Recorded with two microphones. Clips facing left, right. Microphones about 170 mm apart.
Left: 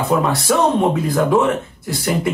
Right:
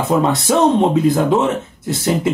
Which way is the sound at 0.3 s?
20° right (ahead or behind).